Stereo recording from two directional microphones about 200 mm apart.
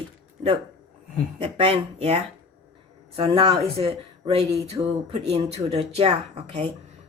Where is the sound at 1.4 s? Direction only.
30° right (ahead or behind).